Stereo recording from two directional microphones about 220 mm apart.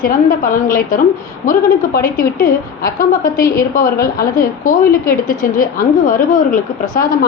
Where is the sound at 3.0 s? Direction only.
40° left (ahead or behind).